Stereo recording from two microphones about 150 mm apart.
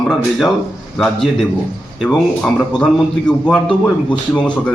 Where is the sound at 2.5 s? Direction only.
5° left (ahead or behind).